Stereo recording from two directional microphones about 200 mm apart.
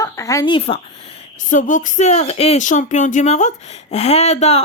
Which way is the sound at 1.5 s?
40° left (ahead or behind).